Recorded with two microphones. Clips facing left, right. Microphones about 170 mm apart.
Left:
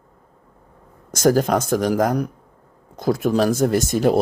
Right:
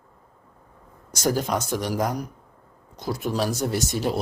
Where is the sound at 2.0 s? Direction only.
60° left (ahead or behind).